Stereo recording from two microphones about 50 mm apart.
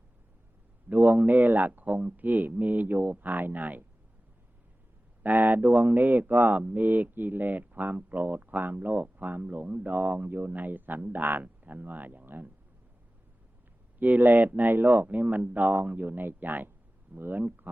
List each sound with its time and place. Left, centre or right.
0.9 s speech: right
5.2 s speech: right
14.0 s speech: right